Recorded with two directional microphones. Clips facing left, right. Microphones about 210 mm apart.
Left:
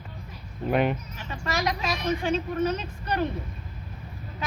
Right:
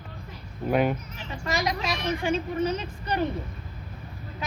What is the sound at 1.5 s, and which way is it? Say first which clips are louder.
Speech: even; 15° right (ahead or behind).